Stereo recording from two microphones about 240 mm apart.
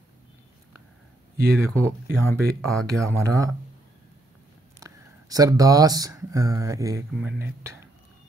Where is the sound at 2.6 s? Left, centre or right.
Centre.